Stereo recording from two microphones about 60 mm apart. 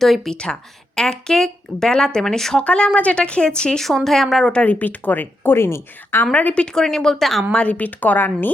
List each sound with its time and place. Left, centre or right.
0.0 s speech: centre
3.8 s speech: centre
4.5 s a woman's voice: left
6.3 s speech: left; by 7.4 s centre
7.5 s speech: left